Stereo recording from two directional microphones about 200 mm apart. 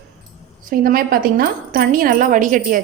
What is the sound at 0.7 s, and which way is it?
A woman's voice, 45° right (ahead or behind).